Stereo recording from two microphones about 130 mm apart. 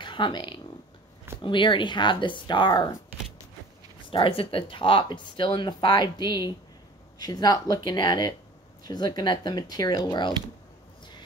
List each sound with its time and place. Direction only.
0.0 s speech: 35° left (ahead or behind)
4.1 s speech: 45° left (ahead or behind)